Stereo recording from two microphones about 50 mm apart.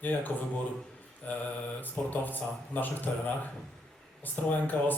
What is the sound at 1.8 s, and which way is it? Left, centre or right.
A man's voice, left.